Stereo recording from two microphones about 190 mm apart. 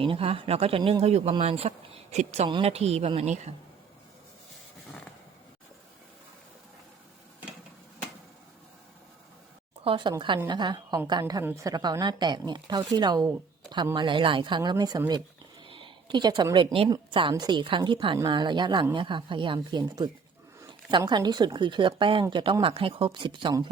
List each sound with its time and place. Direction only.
0.0 s speech: 30° right (ahead or behind)
9.8 s a woman's voice: 25° right (ahead or behind)
15.6 s a sound: 25° right (ahead or behind)
16.7 s a woman's voice: 30° right (ahead or behind)